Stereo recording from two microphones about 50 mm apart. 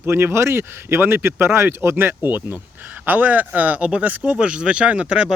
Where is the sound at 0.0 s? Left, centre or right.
Right.